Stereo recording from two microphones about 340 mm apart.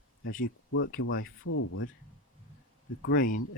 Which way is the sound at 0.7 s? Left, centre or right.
Left.